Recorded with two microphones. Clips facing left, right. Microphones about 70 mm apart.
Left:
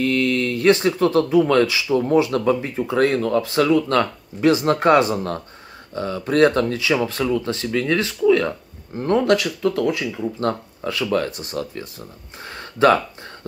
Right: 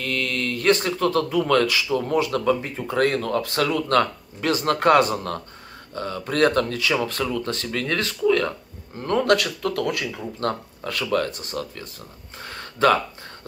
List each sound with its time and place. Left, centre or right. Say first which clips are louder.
0.0 s mantra: left 7 dB; left
1.5 s speech: left 3 dB; centre
9.2 s speech: left 2 dB; centre
10.8 s speech: left 2 dB; centre